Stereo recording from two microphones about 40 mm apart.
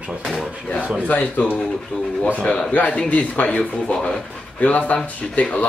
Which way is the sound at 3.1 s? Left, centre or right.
Left.